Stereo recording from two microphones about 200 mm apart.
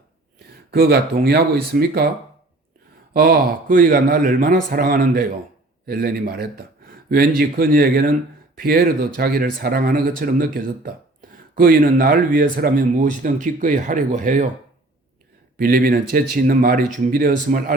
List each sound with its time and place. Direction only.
0.3 s speech: 50° right (ahead or behind)
3.1 s speech: 50° right (ahead or behind)
15.5 s speech: 45° right (ahead or behind)